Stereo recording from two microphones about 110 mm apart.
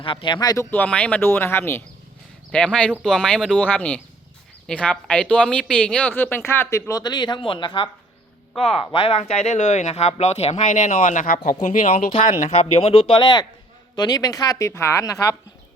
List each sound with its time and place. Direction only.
0.0 s speech: 50° left (ahead or behind)
0.6 s speech: 15° left (ahead or behind)
2.5 s speech: 10° left (ahead or behind); by 7.0 s 25° left (ahead or behind)
7.0 s speech: 40° left (ahead or behind); by 10.9 s 90° left
11.8 s speech: 80° left; by 14.7 s 35° left (ahead or behind)
14.7 s speech: 25° left (ahead or behind)